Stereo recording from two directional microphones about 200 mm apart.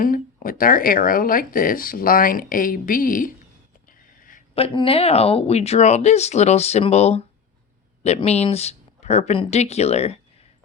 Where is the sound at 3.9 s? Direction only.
45° left (ahead or behind).